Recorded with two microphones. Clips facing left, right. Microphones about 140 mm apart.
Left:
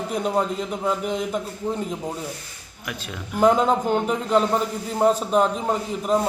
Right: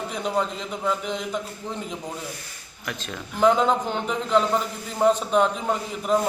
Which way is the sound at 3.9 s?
45° left (ahead or behind).